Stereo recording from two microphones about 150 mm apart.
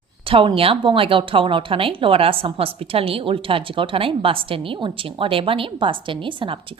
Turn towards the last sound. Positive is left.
turn(degrees=-35)  # may be behind; listen again after turning